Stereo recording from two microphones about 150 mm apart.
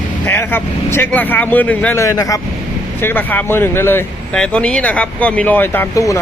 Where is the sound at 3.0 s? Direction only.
10° left (ahead or behind).